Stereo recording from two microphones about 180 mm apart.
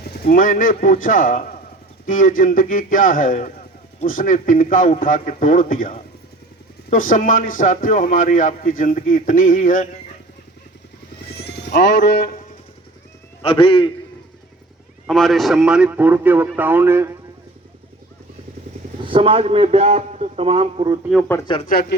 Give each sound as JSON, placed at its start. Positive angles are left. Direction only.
{"t": 0.1, "sound": "a man's voice", "side_deg": 55}
{"t": 11.3, "sound": "music", "side_deg": 65}
{"t": 13.4, "sound": "a man's voice", "side_deg": 30}
{"t": 15.0, "sound": "a man's voice", "side_deg": 0}
{"t": 19.0, "sound": "a man's voice", "side_deg": -30}
{"t": 21.0, "sound": "a man's voice", "side_deg": -5}
{"t": 21.7, "sound": "speech", "side_deg": 60}